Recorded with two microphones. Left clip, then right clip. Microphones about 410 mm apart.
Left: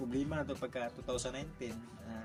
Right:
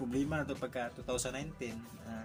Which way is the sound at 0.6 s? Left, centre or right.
Left.